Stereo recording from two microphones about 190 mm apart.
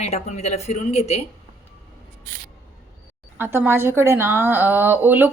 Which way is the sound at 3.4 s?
10° right (ahead or behind).